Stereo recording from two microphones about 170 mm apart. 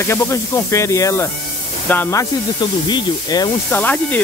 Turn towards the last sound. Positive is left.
turn(degrees=10)  # may be behind; listen again after turning